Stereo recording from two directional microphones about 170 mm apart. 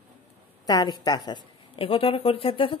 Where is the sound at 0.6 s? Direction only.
25° left (ahead or behind).